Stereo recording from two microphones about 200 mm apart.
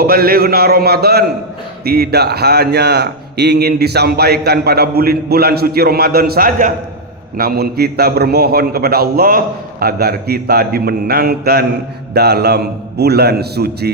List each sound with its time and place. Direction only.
0.0 s a man's voice: 50° right (ahead or behind)